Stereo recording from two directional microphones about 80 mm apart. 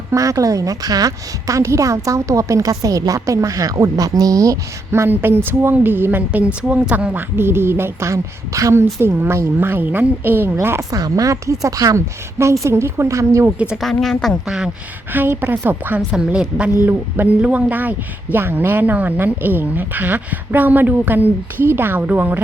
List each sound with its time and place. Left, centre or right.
0.1 s a woman's voice: right
4.9 s speech: right
8.8 s speech: right
10.8 s a woman's voice: right
14.0 s speech: centre
14.4 s a woman's voice: centre
15.1 s speech: right
16.0 s a woman's voice: centre